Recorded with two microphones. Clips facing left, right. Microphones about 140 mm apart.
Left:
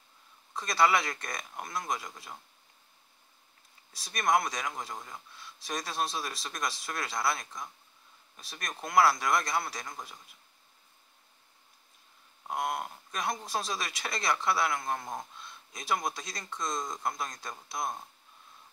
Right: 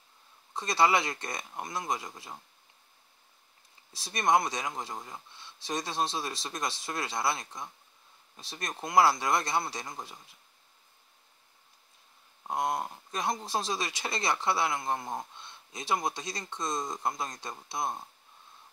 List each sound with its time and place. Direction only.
0.6 s speech: 25° right (ahead or behind)
4.0 s speech: 30° right (ahead or behind)
12.4 s speech: 25° right (ahead or behind)